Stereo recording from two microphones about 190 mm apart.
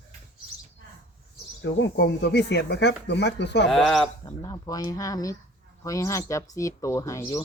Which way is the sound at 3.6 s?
Centre (ahead or behind).